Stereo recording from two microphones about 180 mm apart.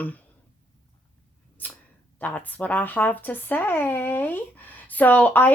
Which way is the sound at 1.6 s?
10° left (ahead or behind).